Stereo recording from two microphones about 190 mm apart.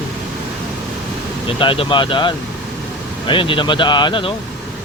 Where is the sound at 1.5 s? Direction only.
25° left (ahead or behind).